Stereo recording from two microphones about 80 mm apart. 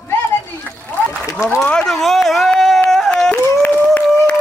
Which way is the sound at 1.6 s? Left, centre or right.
Centre.